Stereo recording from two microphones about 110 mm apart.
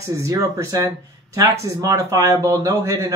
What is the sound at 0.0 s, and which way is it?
Speech, 30° right (ahead or behind).